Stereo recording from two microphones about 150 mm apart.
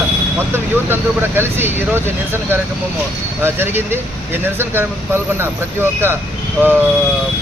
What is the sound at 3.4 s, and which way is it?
Speech, 15° right (ahead or behind).